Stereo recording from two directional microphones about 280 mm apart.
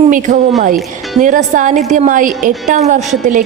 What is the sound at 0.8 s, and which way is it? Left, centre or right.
Music, centre.